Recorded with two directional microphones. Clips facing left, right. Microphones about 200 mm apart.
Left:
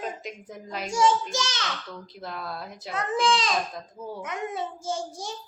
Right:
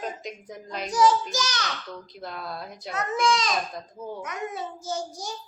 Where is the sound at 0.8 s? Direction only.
25° left (ahead or behind).